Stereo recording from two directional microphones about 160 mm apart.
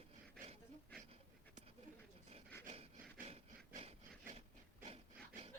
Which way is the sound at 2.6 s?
45° right (ahead or behind).